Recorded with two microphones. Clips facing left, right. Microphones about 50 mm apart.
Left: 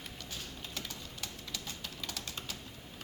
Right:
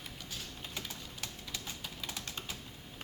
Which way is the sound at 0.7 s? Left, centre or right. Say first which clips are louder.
Even; centre.